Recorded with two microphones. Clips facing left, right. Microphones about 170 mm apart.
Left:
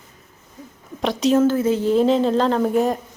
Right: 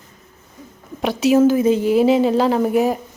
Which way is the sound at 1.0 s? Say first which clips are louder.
Right 3 dB; 5° right (ahead or behind).